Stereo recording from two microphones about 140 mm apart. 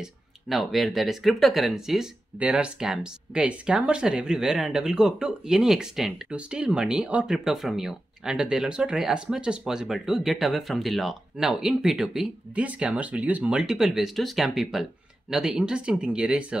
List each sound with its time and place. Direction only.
0.0 s speech: centre (ahead or behind)